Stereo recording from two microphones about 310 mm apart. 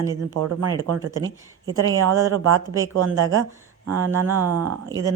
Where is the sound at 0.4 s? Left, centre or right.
Right.